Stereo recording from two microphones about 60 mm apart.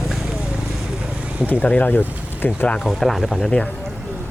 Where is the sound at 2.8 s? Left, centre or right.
Centre.